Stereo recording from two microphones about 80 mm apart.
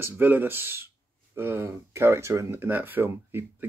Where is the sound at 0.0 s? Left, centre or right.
Right.